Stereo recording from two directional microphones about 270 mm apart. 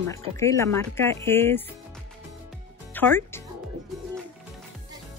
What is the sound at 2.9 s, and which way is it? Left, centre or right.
Speech, centre.